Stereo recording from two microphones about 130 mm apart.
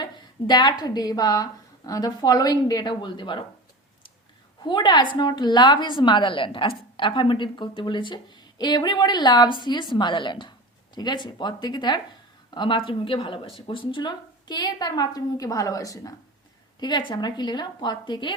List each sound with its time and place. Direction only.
0.0 s a woman's voice: 35° left (ahead or behind)
4.6 s a woman's voice: 35° left (ahead or behind)
16.8 s a woman's voice: 35° left (ahead or behind)